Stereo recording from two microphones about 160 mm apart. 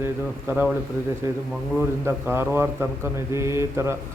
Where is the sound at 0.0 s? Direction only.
10° right (ahead or behind).